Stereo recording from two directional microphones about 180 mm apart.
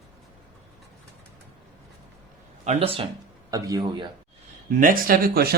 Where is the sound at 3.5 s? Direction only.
20° right (ahead or behind).